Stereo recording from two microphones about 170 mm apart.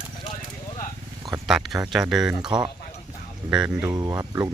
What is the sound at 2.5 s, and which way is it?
Speech, 25° right (ahead or behind).